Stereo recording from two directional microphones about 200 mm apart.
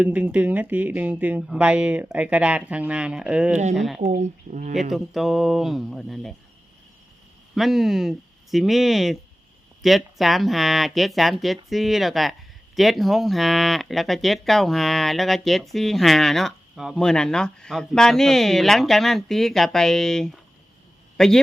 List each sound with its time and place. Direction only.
0.0 s speech: 5° right (ahead or behind)
4.0 s speech: 40° right (ahead or behind)
4.7 s speech: centre (ahead or behind)
7.5 s speech: centre (ahead or behind)